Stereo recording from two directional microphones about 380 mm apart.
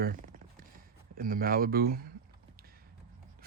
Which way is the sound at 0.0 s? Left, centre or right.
Right.